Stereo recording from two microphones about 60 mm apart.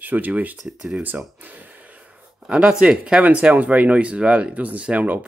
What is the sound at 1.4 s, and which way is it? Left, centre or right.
Speech, right.